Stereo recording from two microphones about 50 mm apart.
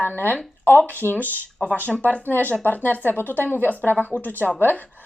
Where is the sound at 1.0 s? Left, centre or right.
Right.